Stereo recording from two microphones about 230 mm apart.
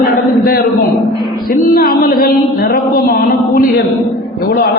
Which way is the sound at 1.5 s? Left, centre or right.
Left.